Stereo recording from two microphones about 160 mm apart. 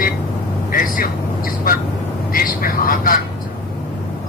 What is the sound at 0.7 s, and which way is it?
Vehicle, 60° left (ahead or behind).